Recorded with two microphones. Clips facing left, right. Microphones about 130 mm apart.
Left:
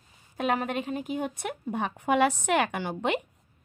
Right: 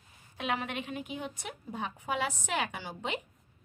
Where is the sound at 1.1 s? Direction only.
55° left (ahead or behind).